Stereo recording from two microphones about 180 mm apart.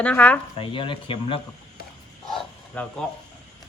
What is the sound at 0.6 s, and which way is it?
Speech, 30° left (ahead or behind).